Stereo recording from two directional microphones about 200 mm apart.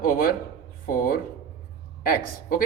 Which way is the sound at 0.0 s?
45° left (ahead or behind).